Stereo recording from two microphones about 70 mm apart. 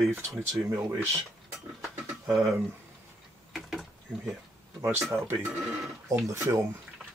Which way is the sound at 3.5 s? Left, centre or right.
Centre.